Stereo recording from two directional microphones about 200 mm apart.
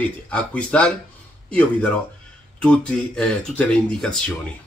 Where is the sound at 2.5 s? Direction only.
5° left (ahead or behind).